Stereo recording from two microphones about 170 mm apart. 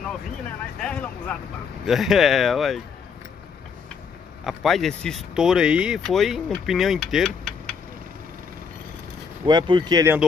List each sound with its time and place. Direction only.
0.7 s speech: 5° left (ahead or behind)
4.5 s speech: centre (ahead or behind)
9.5 s speech: 25° right (ahead or behind)